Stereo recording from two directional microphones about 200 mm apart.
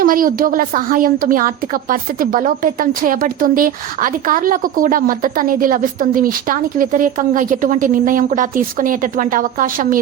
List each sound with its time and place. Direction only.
0.0 s speech: 45° right (ahead or behind)